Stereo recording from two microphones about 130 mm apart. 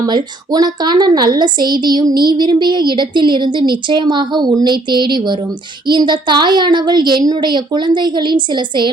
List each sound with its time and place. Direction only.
0.0 s a woman's voice: 30° right (ahead or behind)